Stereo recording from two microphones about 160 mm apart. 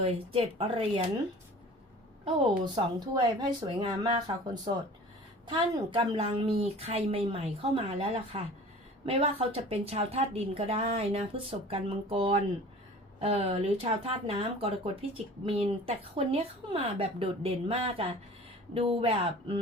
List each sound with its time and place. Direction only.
0.0 s a woman's voice: 40° right (ahead or behind)
2.2 s a woman's voice: 30° right (ahead or behind)
5.5 s a woman's voice: 30° right (ahead or behind)